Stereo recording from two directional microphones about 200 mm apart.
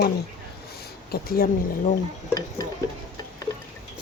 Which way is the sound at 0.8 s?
50° left (ahead or behind).